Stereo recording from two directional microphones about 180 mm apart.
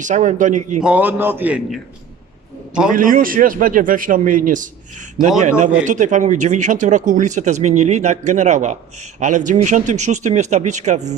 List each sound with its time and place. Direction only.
0.0 s a man's voice: 45° right (ahead or behind)
0.8 s a man's voice: 5° right (ahead or behind)
2.9 s a man's voice: 50° right (ahead or behind)